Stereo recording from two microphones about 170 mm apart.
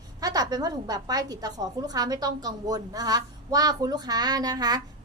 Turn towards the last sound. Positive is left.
turn(degrees=-20)  # may be behind; listen again after turning